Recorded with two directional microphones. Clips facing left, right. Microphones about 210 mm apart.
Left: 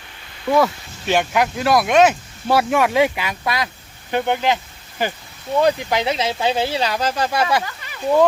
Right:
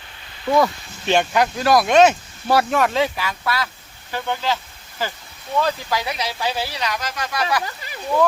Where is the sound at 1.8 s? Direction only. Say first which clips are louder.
Even; 10° left (ahead or behind); by 7.6 s 25° left (ahead or behind).